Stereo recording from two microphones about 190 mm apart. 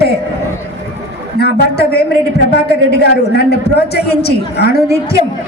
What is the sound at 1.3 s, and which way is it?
A woman's voice, 55° left (ahead or behind).